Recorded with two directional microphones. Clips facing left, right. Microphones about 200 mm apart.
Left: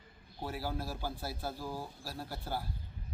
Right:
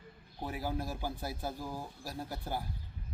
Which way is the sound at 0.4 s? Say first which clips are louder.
Right 1 dB; 15° right (ahead or behind).